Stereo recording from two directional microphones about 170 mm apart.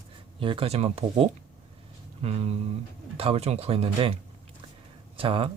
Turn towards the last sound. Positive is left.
turn(degrees=-30)  # may be behind; listen again after turning